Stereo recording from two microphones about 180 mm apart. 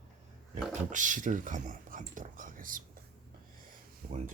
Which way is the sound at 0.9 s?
45° right (ahead or behind).